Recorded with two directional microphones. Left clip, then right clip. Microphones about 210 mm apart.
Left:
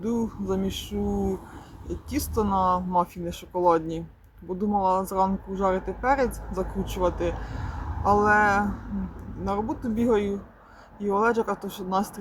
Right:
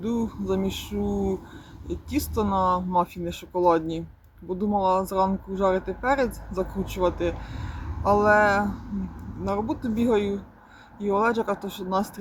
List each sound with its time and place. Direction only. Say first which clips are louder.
0.0 s speech: even; centre (ahead or behind)